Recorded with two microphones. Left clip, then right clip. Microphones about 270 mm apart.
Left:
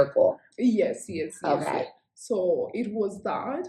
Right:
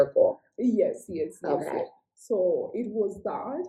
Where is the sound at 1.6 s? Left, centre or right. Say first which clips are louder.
Left 2 dB; centre.